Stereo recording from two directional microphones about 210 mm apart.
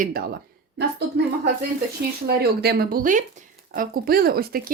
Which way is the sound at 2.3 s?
50° right (ahead or behind).